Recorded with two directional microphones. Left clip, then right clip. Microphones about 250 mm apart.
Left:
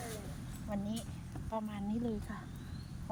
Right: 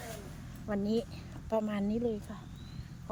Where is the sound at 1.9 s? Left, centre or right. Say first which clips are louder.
Right 5 dB; centre.